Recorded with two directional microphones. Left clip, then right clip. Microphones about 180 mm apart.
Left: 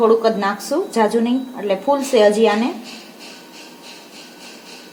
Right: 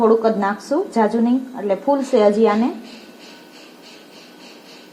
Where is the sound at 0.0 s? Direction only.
20° right (ahead or behind).